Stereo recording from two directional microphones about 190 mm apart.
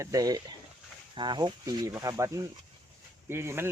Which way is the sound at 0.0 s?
20° right (ahead or behind).